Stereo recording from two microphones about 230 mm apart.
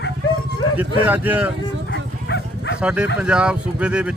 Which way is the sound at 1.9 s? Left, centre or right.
Left.